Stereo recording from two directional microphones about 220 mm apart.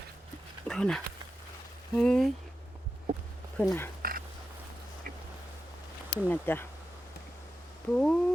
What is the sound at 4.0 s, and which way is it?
Duck, 40° right (ahead or behind).